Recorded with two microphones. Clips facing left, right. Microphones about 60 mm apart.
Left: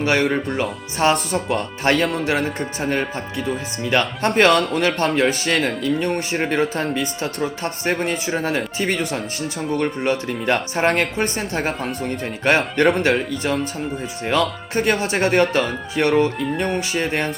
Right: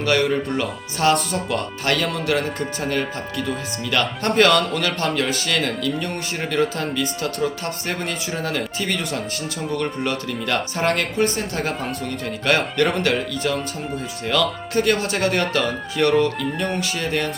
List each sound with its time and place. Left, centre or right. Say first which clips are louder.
0.0 s speech: left 1 dB; left
0.3 s speech: even; centre
0.6 s speech: left 1 dB; left